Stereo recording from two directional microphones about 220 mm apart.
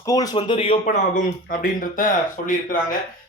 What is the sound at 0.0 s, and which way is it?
Speech, 15° left (ahead or behind).